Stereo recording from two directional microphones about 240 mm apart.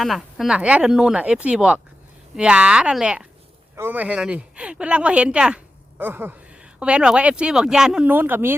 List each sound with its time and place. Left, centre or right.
0.0 s speech: centre